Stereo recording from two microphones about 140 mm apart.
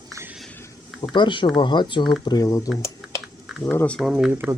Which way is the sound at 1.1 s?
35° left (ahead or behind).